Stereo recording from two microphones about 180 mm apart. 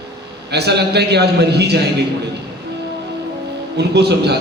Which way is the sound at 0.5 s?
65° right (ahead or behind).